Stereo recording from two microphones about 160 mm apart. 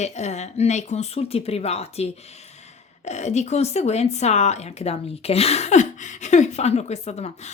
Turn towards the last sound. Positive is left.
turn(degrees=45)  # may be behind; listen again after turning